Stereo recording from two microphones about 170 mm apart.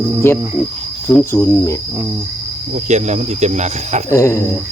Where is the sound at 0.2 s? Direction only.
15° left (ahead or behind).